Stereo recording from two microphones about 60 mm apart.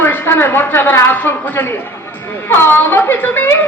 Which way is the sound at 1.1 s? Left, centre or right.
Left.